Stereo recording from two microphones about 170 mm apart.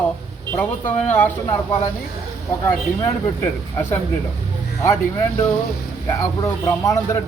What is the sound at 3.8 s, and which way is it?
Speech, 10° left (ahead or behind).